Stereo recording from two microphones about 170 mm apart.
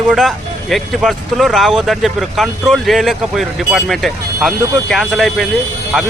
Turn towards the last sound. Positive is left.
turn(degrees=0)  # may be behind; listen again after turning